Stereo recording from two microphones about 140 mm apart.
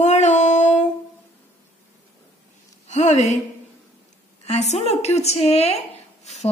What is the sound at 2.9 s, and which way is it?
Speech, 60° left (ahead or behind).